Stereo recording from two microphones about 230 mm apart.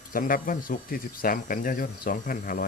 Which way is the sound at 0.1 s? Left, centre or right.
Left.